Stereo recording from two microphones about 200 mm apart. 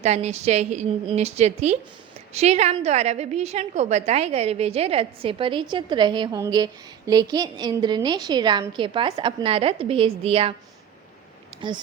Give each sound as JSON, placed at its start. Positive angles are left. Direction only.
{"t": 0.0, "sound": "a woman's voice", "side_deg": -35}